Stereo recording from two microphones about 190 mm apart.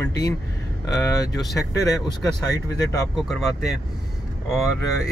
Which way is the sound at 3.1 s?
Centre (ahead or behind).